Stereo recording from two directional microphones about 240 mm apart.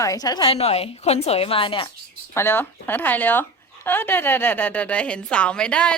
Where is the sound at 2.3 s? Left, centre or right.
Centre.